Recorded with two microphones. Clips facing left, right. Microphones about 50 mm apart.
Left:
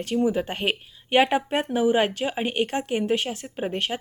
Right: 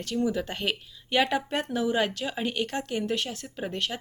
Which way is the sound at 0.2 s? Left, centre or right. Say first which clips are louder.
Left 3 dB; left.